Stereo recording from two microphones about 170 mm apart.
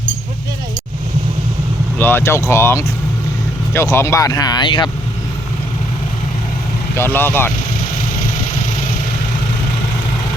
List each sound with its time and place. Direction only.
2.0 s speech: 10° left (ahead or behind); by 4.9 s 25° left (ahead or behind)
6.9 s speech: 15° left (ahead or behind)